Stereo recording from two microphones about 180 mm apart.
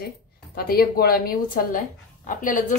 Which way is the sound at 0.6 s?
55° left (ahead or behind).